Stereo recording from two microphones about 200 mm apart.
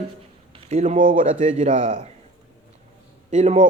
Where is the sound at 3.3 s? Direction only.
35° right (ahead or behind).